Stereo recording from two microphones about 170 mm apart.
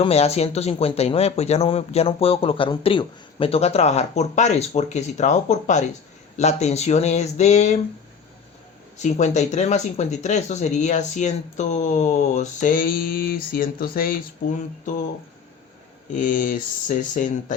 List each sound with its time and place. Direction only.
0.0 s speech: 35° left (ahead or behind)
9.0 s speech: 45° left (ahead or behind)
16.1 s speech: 50° left (ahead or behind)